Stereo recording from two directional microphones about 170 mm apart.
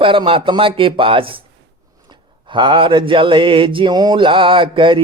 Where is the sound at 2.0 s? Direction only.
25° right (ahead or behind).